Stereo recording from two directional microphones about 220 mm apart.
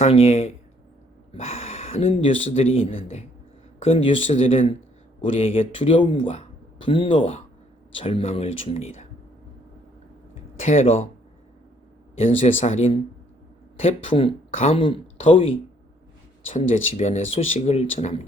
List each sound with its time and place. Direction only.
0.0 s speech: 25° left (ahead or behind)
10.6 s speech: 30° left (ahead or behind)
12.4 s speech: 30° left (ahead or behind)
16.5 s speech: 30° left (ahead or behind)